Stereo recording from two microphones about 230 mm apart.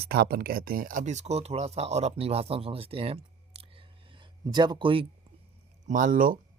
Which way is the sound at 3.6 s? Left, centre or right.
Right.